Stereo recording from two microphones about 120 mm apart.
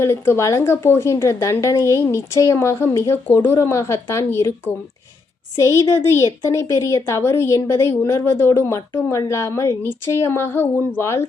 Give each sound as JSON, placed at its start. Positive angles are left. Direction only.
{"t": 0.0, "sound": "a woman's voice", "side_deg": 20}